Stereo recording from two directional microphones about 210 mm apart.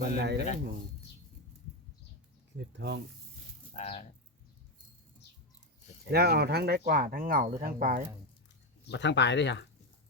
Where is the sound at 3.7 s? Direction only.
30° left (ahead or behind).